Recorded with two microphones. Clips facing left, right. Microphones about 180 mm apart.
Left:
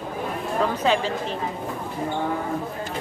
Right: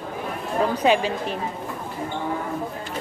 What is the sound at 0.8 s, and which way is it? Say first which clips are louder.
Speech: right 4 dB; 15° right (ahead or behind).